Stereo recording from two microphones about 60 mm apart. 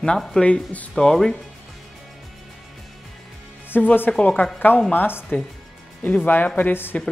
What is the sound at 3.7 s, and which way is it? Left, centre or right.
Speech, left.